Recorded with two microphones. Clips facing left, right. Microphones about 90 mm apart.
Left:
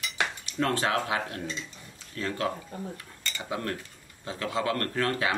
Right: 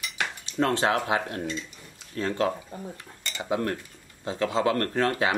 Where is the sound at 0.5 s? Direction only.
25° right (ahead or behind).